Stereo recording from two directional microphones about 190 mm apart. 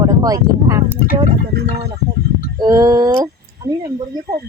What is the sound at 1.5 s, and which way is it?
Speech, 55° right (ahead or behind).